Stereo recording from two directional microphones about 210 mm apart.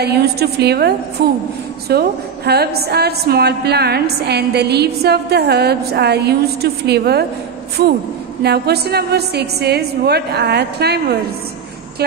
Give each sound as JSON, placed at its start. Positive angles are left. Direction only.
{"t": 0.0, "sound": "a woman's voice", "side_deg": -50}
{"t": 8.4, "sound": "a woman's voice", "side_deg": -50}